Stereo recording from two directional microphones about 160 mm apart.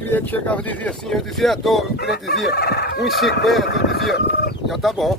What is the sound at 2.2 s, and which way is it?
Fowl, 85° left.